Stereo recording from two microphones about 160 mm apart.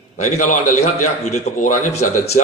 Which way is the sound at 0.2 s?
50° left (ahead or behind).